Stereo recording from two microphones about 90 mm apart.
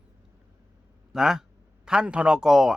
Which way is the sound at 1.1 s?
5° right (ahead or behind).